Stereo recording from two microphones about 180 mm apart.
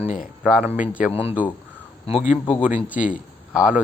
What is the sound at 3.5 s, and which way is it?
Speech, 5° right (ahead or behind).